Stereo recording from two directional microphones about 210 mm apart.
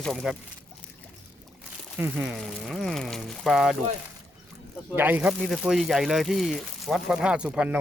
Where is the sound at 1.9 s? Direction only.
10° right (ahead or behind).